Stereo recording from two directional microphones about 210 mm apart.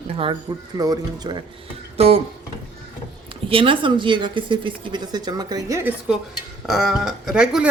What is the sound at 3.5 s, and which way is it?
A woman's voice, 25° right (ahead or behind).